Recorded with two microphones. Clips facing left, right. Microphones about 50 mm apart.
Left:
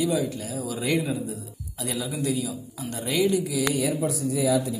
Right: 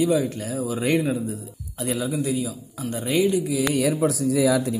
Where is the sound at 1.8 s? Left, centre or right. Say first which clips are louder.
Right 4 dB; right.